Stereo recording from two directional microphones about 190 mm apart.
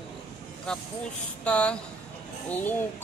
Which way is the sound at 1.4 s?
5° left (ahead or behind).